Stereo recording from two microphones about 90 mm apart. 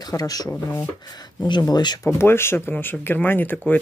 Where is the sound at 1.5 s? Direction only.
50° left (ahead or behind).